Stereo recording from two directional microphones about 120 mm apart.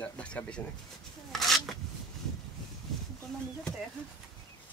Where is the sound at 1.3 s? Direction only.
Centre (ahead or behind).